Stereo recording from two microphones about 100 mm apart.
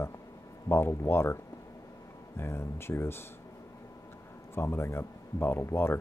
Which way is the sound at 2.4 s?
25° left (ahead or behind).